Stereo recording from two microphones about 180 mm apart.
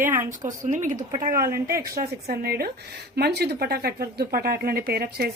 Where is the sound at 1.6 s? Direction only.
55° right (ahead or behind).